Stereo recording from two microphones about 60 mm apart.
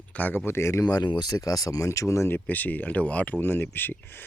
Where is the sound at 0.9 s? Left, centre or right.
Left.